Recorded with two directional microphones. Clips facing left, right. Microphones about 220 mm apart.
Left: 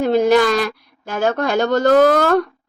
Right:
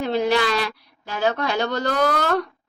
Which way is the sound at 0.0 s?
45° left (ahead or behind).